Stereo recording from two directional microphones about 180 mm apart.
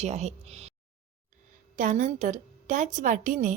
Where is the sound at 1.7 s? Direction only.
45° right (ahead or behind).